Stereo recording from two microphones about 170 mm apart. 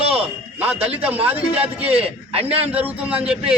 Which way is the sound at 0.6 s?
10° right (ahead or behind).